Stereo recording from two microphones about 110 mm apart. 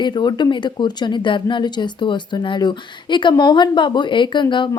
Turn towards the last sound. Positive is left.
turn(degrees=45)  # may be behind; listen again after turning